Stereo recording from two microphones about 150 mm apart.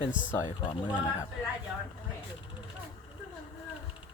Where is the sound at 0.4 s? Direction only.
30° left (ahead or behind).